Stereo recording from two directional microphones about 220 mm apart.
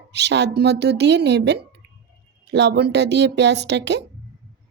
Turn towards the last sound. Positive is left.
turn(degrees=-50)  # may be behind; listen again after turning